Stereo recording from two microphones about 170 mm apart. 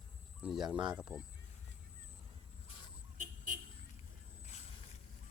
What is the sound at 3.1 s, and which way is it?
Vehicle, 50° right (ahead or behind).